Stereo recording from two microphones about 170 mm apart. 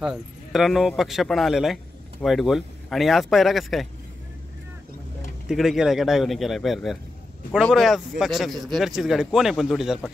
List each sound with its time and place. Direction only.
0.0 s speech: centre (ahead or behind)
5.5 s speech: centre (ahead or behind)